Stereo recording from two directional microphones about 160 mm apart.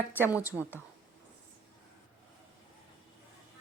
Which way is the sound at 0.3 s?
10° right (ahead or behind).